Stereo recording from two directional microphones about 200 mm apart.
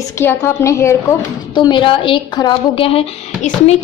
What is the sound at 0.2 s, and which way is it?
A woman's voice, 10° left (ahead or behind).